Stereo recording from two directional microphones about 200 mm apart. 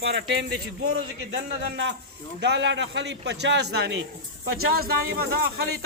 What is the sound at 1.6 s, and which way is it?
A man's voice, 60° right (ahead or behind).